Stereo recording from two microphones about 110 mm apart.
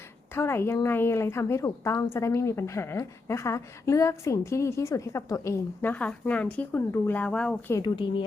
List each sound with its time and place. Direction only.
0.3 s a woman's voice: 20° left (ahead or behind)
5.9 s speech: 15° left (ahead or behind)